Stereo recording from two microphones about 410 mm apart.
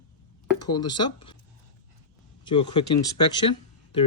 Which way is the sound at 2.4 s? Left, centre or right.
Centre.